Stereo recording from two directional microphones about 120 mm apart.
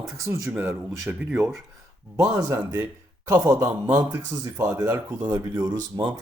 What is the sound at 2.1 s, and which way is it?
Speech, 25° right (ahead or behind).